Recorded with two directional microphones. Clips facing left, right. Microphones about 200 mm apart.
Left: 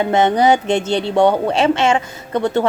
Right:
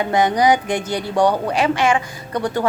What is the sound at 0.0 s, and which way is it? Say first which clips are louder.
Speech: left 2 dB; 25° left (ahead or behind).